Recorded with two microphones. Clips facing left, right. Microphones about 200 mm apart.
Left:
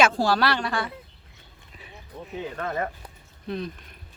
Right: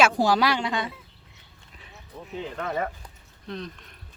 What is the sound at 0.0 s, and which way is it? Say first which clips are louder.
Speech: even; 15° right (ahead or behind).